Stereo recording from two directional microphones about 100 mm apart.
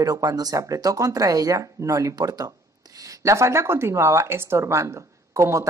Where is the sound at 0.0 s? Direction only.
40° right (ahead or behind).